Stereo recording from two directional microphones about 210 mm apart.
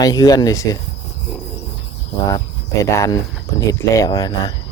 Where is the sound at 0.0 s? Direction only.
15° left (ahead or behind).